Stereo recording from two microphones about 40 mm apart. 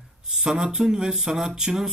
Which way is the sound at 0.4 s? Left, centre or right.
Centre.